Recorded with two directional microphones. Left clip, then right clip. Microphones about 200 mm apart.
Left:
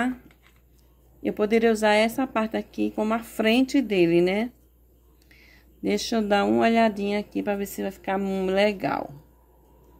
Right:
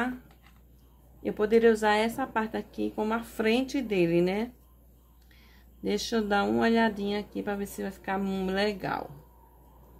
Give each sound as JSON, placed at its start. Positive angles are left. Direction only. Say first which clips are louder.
{"t": 1.2, "sound": "speech", "louder": "left 1 dB", "side_deg": 40}